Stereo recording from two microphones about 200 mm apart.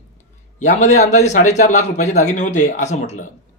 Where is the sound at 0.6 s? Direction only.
35° left (ahead or behind).